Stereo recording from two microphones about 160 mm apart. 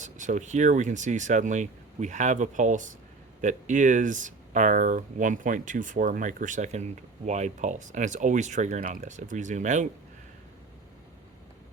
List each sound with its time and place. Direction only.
0.0 s speech: 50° right (ahead or behind)